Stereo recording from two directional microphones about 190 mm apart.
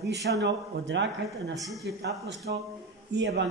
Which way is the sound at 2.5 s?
60° right (ahead or behind).